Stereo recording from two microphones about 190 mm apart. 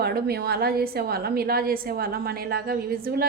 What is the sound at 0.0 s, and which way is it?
A woman's voice, 55° right (ahead or behind).